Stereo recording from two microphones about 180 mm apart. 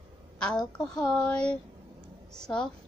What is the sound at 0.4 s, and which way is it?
Speech, 5° left (ahead or behind).